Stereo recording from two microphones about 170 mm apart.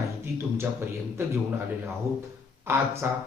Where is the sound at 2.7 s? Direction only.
15° right (ahead or behind).